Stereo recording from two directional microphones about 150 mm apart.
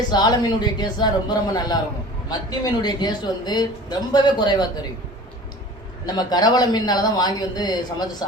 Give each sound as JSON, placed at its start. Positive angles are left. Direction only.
{"t": 0.1, "sound": "a man's voice", "side_deg": 30}
{"t": 6.1, "sound": "a man's voice", "side_deg": 25}